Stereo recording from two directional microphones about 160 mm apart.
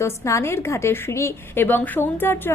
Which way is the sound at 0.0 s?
20° left (ahead or behind).